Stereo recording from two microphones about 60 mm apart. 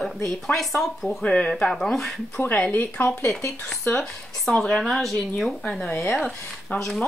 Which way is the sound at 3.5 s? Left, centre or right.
Centre.